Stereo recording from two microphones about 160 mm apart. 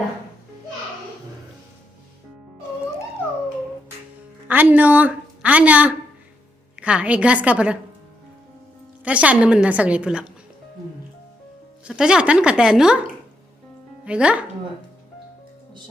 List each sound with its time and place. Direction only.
4.4 s a woman's voice: 10° right (ahead or behind)
9.0 s a woman's voice: 10° right (ahead or behind)
11.9 s speech: 5° right (ahead or behind)
14.0 s speech: 5° right (ahead or behind)